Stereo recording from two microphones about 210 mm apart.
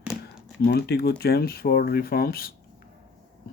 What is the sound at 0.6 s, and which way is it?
Speech, 50° left (ahead or behind).